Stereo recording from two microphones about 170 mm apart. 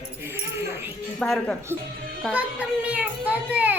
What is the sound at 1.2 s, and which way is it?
Speech, 5° left (ahead or behind).